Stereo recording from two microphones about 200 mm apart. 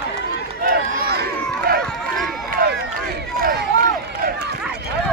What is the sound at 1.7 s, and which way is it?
Run, 50° right (ahead or behind).